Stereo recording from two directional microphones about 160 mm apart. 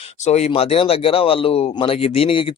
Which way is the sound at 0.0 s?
40° left (ahead or behind).